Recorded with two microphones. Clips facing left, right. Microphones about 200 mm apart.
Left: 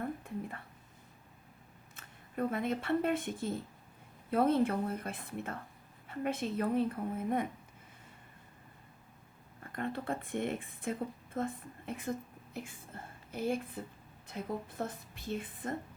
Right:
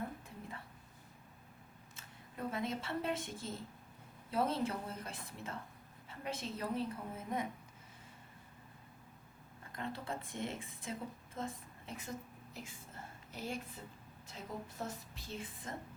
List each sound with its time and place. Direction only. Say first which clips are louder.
2.0 s a woman's voice: left 9 dB; 55° left (ahead or behind)
9.7 s a woman's voice: left 6 dB; 55° left (ahead or behind)